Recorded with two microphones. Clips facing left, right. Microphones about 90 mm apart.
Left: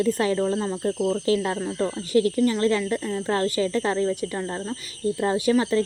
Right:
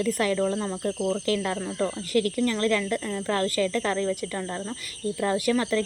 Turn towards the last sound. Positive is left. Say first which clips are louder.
# left 3 dB
turn(degrees=20)  # may be behind; listen again after turning